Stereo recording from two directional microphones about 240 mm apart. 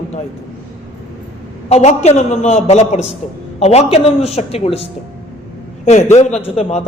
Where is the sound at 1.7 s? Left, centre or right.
Left.